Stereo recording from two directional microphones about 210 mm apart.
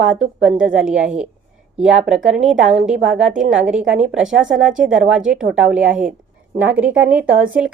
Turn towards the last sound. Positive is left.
turn(degrees=-5)  # may be behind; listen again after turning